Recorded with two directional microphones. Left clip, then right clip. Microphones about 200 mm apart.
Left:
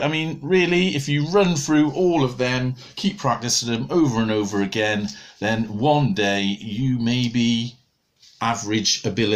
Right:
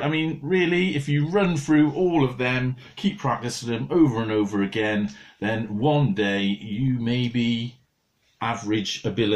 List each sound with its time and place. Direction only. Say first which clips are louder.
0.0 s speech: left 2 dB; 15° left (ahead or behind)
2.0 s speech: left 2 dB; 30° left (ahead or behind)